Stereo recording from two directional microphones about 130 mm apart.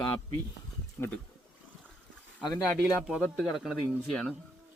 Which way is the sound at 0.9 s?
15° left (ahead or behind).